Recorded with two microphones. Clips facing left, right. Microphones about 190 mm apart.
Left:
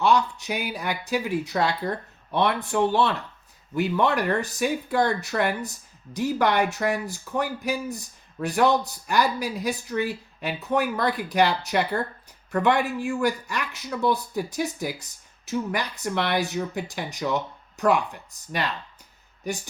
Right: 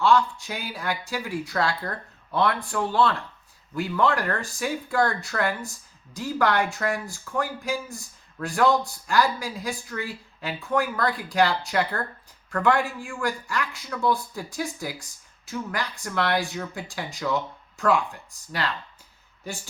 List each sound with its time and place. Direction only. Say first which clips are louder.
0.0 s speech: right 1 dB; 20° left (ahead or behind)